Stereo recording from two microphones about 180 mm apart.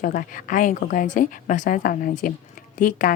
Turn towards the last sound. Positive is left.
turn(degrees=50)  # may be behind; listen again after turning